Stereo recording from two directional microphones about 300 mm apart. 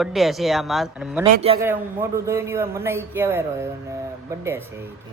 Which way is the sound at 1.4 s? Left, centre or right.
Centre.